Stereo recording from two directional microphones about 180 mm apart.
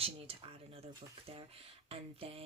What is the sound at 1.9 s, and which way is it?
Speech, 30° right (ahead or behind).